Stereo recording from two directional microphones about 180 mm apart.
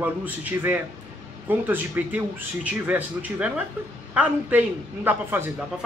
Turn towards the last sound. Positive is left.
turn(degrees=-10)  # may be behind; listen again after turning